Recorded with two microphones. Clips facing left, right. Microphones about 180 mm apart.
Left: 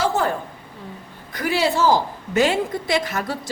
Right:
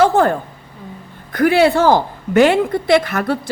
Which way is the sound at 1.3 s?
55° right (ahead or behind).